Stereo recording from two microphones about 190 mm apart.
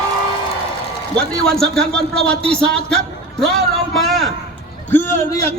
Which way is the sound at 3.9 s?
Centre (ahead or behind).